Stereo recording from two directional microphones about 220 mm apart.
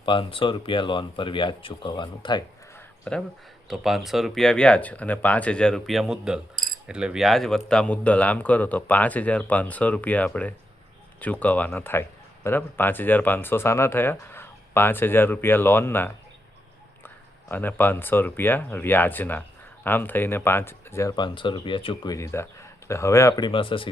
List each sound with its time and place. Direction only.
0.0 s speech: 25° left (ahead or behind)
3.0 s speech: 5° left (ahead or behind)
17.5 s speech: 10° left (ahead or behind)